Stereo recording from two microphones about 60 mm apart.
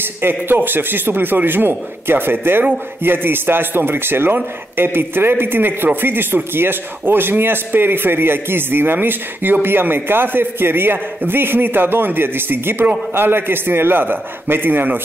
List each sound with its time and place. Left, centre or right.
0.2 s a man's voice: right